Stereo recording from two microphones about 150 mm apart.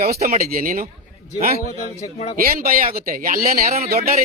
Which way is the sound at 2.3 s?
75° right (ahead or behind).